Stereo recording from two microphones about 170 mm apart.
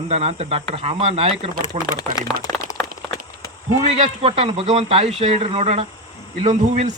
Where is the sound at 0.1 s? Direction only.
40° right (ahead or behind).